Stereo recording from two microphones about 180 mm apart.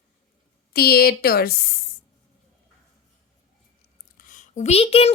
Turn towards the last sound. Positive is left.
turn(degrees=35)  # may be behind; listen again after turning